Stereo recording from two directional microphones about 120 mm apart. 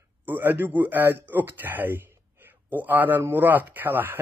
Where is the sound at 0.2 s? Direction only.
15° right (ahead or behind).